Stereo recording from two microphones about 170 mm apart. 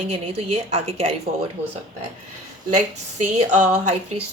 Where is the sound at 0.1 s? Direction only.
35° right (ahead or behind).